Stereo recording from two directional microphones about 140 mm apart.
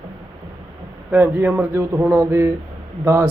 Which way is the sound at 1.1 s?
15° right (ahead or behind).